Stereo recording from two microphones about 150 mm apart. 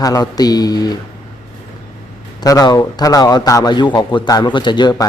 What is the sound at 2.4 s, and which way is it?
A man's voice, 25° left (ahead or behind).